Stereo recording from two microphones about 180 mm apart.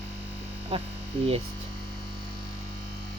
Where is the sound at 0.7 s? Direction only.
30° right (ahead or behind).